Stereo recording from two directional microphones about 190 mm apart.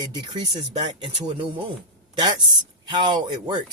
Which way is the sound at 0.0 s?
20° right (ahead or behind).